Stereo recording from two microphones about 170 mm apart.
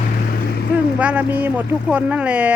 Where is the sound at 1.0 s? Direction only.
10° right (ahead or behind).